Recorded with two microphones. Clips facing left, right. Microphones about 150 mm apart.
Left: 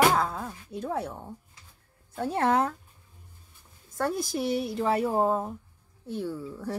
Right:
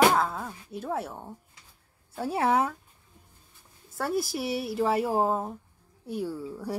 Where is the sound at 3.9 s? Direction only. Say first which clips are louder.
Even; 5° right (ahead or behind).